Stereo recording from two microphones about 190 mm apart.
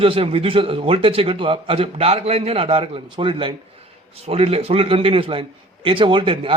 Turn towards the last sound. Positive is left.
turn(degrees=-30)  # may be behind; listen again after turning